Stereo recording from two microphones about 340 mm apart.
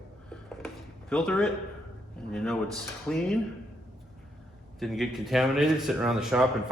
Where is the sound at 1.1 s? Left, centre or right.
Centre.